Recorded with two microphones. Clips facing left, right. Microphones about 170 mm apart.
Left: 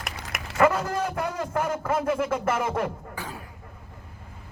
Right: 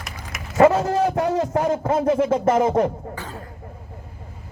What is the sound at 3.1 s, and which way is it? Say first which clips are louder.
Beatboxing: right 3 dB; 10° left (ahead or behind).